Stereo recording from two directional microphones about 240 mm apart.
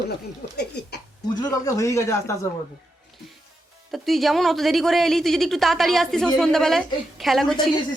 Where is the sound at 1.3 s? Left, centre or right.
Centre.